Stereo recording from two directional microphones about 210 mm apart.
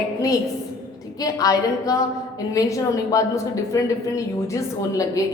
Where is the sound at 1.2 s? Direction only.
15° left (ahead or behind).